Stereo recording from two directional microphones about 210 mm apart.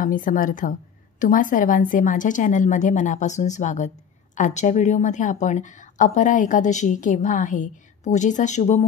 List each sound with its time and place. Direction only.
0.0 s a woman's voice: 40° left (ahead or behind)